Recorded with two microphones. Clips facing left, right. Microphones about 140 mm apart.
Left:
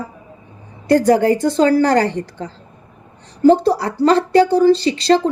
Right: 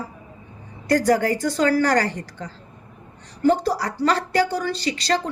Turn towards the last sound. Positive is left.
turn(degrees=30)  # may be behind; listen again after turning